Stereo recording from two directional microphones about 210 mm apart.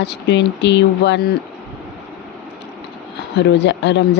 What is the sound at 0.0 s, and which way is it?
A woman's voice, 55° left (ahead or behind).